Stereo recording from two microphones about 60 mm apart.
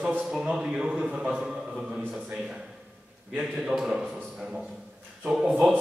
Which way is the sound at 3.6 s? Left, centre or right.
Centre.